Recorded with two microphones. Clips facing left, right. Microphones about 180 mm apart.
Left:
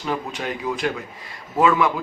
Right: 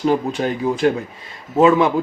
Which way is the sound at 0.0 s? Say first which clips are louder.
Right 9 dB; 30° right (ahead or behind).